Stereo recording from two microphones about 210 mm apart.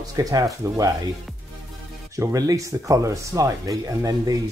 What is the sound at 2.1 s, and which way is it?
Speech, 15° right (ahead or behind).